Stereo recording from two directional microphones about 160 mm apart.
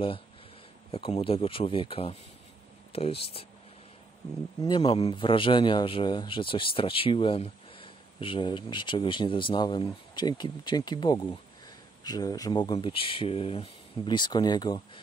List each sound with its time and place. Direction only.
0.9 s a man's voice: 35° left (ahead or behind)
4.6 s a man's voice: 35° left (ahead or behind)